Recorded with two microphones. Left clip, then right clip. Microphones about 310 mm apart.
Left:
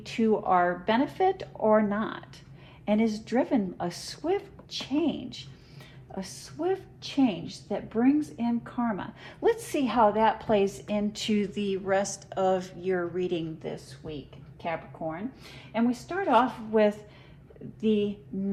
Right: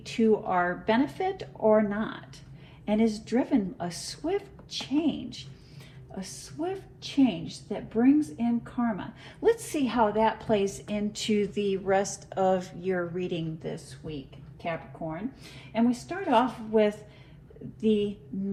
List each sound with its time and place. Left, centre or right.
0.0 s a woman's voice: left
15.7 s a woman's voice: left